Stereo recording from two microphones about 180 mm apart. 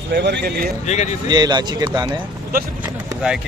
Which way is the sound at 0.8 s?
40° left (ahead or behind).